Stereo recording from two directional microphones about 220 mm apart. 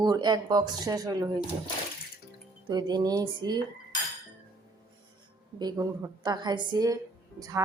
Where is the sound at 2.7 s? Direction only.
20° right (ahead or behind).